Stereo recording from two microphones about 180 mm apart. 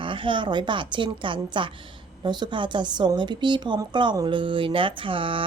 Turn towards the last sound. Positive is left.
turn(degrees=-30)  # may be behind; listen again after turning